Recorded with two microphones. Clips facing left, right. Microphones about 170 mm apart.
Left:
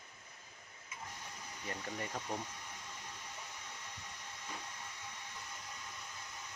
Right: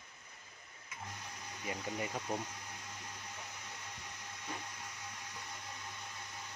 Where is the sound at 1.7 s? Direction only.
10° right (ahead or behind).